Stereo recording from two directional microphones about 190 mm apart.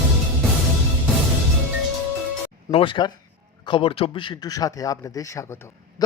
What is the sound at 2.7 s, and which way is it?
A man's voice, 25° left (ahead or behind).